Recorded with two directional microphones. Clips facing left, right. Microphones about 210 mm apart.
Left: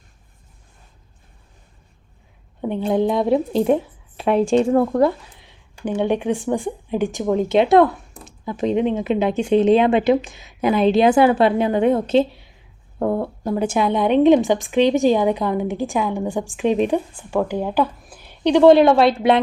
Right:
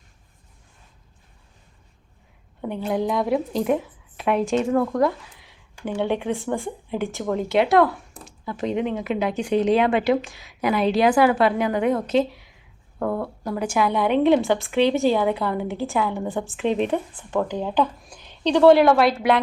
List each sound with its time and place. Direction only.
2.6 s a woman's voice: 20° left (ahead or behind)